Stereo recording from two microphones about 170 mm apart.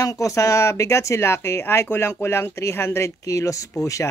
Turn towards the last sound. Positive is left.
turn(degrees=20)  # may be behind; listen again after turning